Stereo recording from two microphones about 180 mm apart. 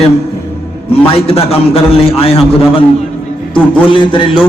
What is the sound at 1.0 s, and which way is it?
A man's voice, 30° left (ahead or behind).